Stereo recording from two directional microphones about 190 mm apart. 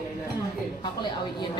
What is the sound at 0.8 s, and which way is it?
Speech, 25° left (ahead or behind).